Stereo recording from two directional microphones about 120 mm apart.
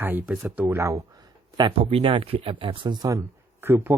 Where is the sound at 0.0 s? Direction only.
15° right (ahead or behind).